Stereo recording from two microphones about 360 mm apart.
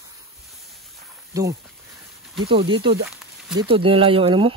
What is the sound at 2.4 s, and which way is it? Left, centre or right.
Speech, centre.